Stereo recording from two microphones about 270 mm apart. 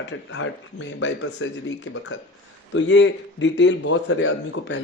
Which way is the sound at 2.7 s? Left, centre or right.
Left.